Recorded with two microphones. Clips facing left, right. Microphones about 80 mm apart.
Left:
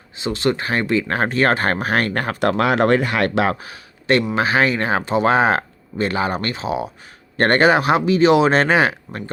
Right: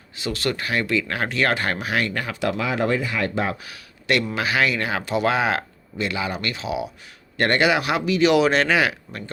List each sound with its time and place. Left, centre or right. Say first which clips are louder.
0.2 s speech: left 5 dB; left
3.6 s a sound: left 4 dB; left
4.4 s speech: left 4 dB; left